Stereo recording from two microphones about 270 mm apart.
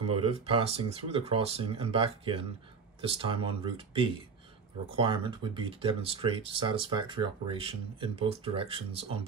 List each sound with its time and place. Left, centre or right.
0.1 s speech: centre